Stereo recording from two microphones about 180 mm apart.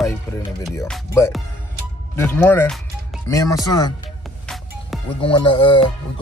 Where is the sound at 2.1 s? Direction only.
15° left (ahead or behind).